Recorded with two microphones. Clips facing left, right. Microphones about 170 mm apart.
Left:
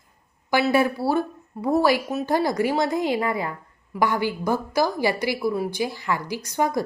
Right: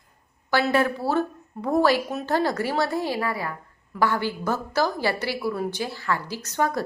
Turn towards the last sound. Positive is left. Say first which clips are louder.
# left 2 dB
turn(degrees=15)  # may be behind; listen again after turning